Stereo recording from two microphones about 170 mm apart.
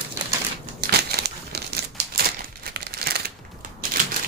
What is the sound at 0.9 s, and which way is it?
Crumpling, 75° right (ahead or behind).